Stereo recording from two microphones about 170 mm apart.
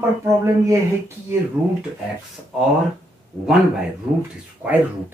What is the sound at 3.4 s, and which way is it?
Speech, centre (ahead or behind).